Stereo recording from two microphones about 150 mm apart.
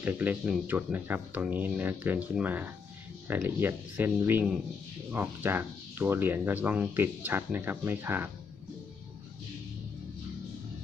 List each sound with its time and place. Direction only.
0.0 s speech: 10° right (ahead or behind)